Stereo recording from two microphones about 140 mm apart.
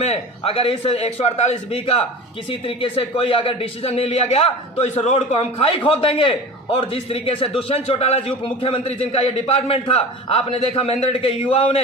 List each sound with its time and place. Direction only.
0.0 s speech: 45° left (ahead or behind)